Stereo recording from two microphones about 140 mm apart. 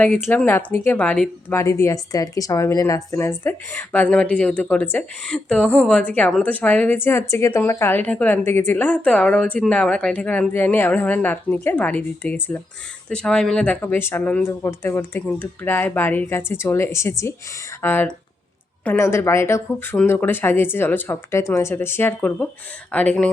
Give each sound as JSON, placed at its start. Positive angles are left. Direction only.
{"t": 0.0, "sound": "speech", "side_deg": 5}
{"t": 1.5, "sound": "speech", "side_deg": 20}
{"t": 6.0, "sound": "speech", "side_deg": 10}